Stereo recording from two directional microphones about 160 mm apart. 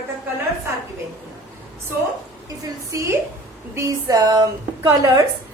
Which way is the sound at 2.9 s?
20° right (ahead or behind).